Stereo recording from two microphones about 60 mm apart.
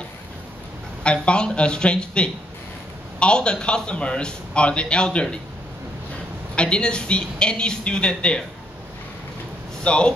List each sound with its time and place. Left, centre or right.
1.0 s a man's voice: centre
6.5 s a man's voice: centre
9.8 s a man's voice: centre